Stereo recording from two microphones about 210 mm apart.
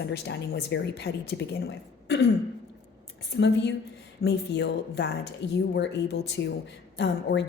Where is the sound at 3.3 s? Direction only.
55° left (ahead or behind).